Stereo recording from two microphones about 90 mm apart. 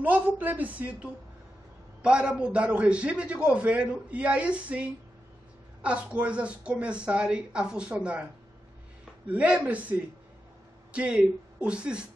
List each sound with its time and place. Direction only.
0.0 s a man's voice: 20° right (ahead or behind)
9.3 s a man's voice: 15° right (ahead or behind)